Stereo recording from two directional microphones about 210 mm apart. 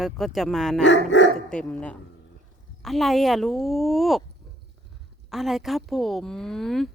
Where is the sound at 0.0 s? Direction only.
Centre (ahead or behind).